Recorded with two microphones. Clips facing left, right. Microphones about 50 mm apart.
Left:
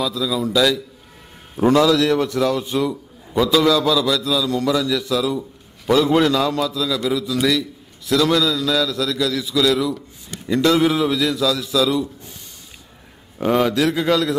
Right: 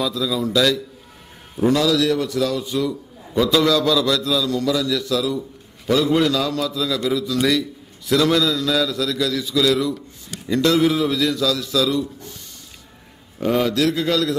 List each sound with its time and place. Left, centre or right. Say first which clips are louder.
0.0 s a man's voice: even; centre
1.6 s a man's voice: left 3 dB; left
2.9 s a sound: left 1 dB; centre
3.5 s a man's voice: left 1 dB; centre
4.6 s a man's voice: left 1 dB; left
6.0 s a man's voice: left 2 dB; left
6.3 s a man's voice: left 3 dB; left
6.7 s a man's voice: even; centre
10.5 s a man's voice: left 1 dB; centre
11.1 s a man's voice: left 1 dB; centre
13.4 s a man's voice: left 1 dB; left